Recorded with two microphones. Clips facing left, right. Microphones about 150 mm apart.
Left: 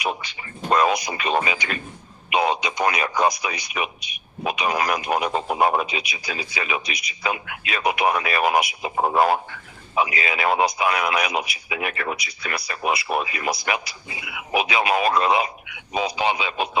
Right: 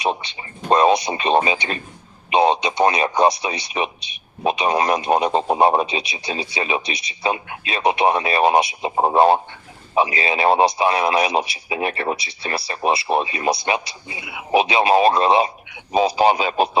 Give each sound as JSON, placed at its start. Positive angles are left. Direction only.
{"t": 0.0, "sound": "speech", "side_deg": -25}